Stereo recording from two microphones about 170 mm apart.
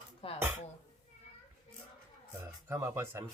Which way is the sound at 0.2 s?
35° left (ahead or behind).